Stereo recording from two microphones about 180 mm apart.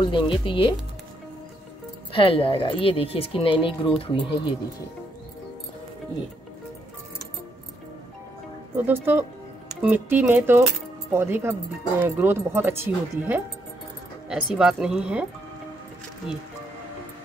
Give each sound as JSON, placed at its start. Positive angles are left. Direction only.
{"t": 0.0, "sound": "speech", "side_deg": 25}
{"t": 2.1, "sound": "speech", "side_deg": 30}
{"t": 8.7, "sound": "speech", "side_deg": -10}